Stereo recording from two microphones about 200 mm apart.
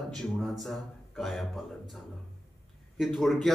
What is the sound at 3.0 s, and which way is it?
Speech, centre (ahead or behind).